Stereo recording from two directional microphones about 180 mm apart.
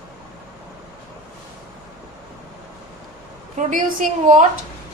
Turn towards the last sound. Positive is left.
turn(degrees=-45)  # may be behind; listen again after turning